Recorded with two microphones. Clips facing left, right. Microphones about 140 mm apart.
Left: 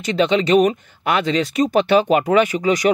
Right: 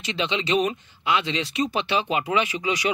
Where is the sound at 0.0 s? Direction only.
45° left (ahead or behind).